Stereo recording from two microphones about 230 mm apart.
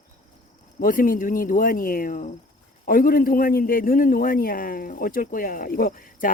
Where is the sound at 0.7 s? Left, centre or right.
Left.